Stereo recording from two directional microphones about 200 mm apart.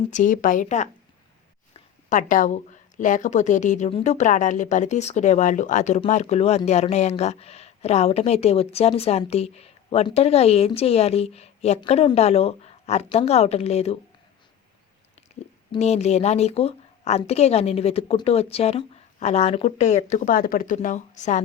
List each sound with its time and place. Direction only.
0.1 s speech: 40° left (ahead or behind)
1.7 s a sound: 40° left (ahead or behind)
3.0 s speech: 40° left (ahead or behind)
15.7 s speech: 35° left (ahead or behind)